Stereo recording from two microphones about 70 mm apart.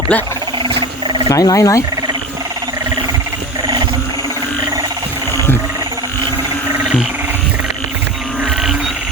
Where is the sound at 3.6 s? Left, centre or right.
Right.